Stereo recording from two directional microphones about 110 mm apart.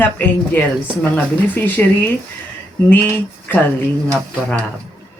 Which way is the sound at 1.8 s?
10° left (ahead or behind).